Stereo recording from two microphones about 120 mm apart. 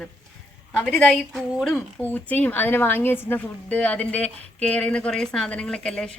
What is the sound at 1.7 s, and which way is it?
A woman's voice, 15° left (ahead or behind).